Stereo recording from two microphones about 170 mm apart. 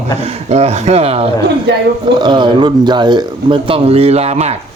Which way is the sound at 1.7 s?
90° right.